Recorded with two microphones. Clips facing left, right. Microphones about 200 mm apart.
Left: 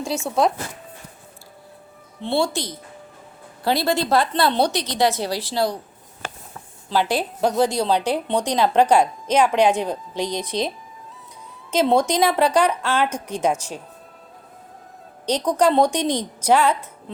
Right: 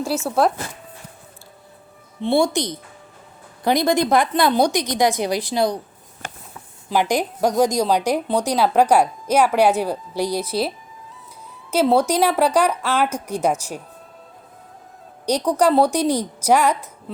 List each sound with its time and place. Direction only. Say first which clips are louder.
0.3 s speech: right 1 dB; 5° right (ahead or behind)
2.2 s a woman's voice: right 4 dB; 15° right (ahead or behind)
6.9 s a woman's voice: right 2 dB; 15° right (ahead or behind)
11.7 s a woman's voice: right 1 dB; 5° right (ahead or behind)
15.3 s a woman's voice: right 1 dB; 10° right (ahead or behind)